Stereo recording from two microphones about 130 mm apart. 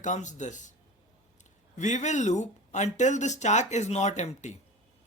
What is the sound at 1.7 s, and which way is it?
Speech, 65° left (ahead or behind).